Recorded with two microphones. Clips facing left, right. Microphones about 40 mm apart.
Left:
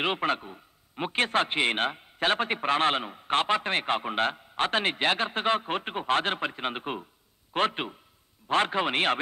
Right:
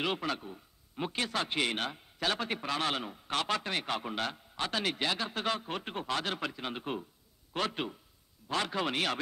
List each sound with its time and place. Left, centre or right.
0.0 s a man's voice: left